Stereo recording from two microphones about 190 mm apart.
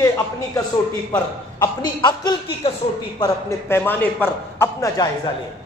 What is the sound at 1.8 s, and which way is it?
Speech, 25° left (ahead or behind).